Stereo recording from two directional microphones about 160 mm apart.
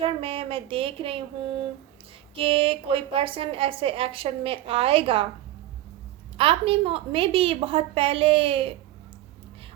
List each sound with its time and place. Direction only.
0.0 s a woman's voice: 35° right (ahead or behind)
6.3 s a woman's voice: 35° right (ahead or behind)